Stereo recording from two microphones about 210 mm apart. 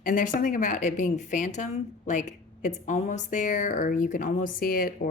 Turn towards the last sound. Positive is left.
turn(degrees=45)  # may be behind; listen again after turning